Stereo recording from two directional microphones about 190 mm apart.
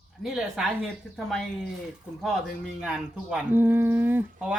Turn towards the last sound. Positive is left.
turn(degrees=-5)  # may be behind; listen again after turning